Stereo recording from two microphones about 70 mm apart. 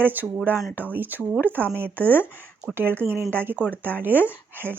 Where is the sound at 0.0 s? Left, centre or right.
Right.